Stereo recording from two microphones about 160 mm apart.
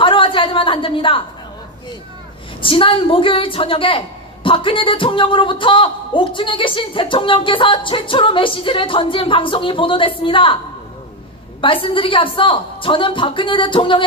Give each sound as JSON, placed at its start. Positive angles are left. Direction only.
{"t": 0.0, "sound": "a sound", "side_deg": 35}
{"t": 2.6, "sound": "a woman's voice", "side_deg": 35}
{"t": 11.6, "sound": "a woman's voice", "side_deg": 35}